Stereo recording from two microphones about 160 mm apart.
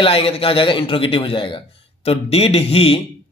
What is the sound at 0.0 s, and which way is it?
Speech, 35° left (ahead or behind).